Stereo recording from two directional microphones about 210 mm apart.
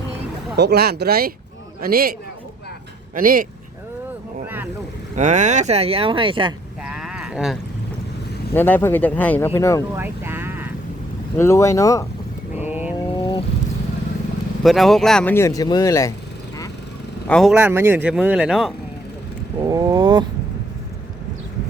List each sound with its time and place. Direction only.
0.5 s speech: 50° right (ahead or behind)
3.2 s speech: 40° right (ahead or behind)
4.4 s boat: 10° right (ahead or behind)
5.1 s speech: 35° right (ahead or behind)
6.8 s a sound: 5° right (ahead or behind)
8.5 s speech: 10° left (ahead or behind)
9.9 s vehicle: 10° right (ahead or behind)
11.3 s speech: 15° left (ahead or behind)
12.5 s vehicle: 10° right (ahead or behind)
13.1 s vehicle: 20° left (ahead or behind)
14.6 s speech: centre (ahead or behind)
17.2 s speech: centre (ahead or behind)
19.6 s speech: 20° right (ahead or behind)